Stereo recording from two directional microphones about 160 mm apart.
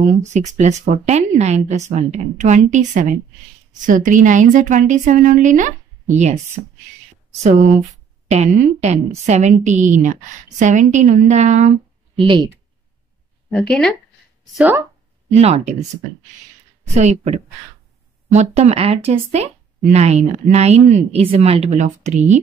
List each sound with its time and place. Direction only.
0.2 s speech: 45° right (ahead or behind)
12.2 s speech: 30° right (ahead or behind)
13.5 s speech: 5° left (ahead or behind)
14.6 s speech: 10° right (ahead or behind)
15.3 s speech: 45° right (ahead or behind)
16.9 s speech: 45° right (ahead or behind)